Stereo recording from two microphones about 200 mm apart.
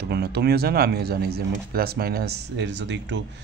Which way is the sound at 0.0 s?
55° right (ahead or behind).